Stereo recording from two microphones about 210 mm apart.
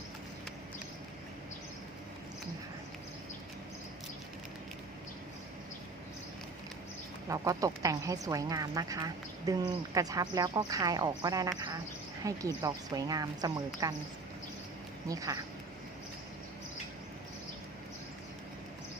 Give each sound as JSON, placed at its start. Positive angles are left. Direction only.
{"t": 7.3, "sound": "speech", "side_deg": -15}
{"t": 15.0, "sound": "speech", "side_deg": -15}